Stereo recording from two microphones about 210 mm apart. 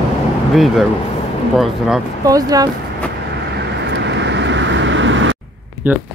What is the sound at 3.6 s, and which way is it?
Vehicle, 55° right (ahead or behind).